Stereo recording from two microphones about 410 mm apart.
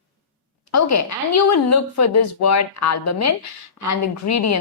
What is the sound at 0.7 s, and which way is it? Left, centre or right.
A woman's voice, left.